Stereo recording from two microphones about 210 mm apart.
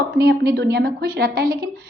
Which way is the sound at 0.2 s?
45° right (ahead or behind).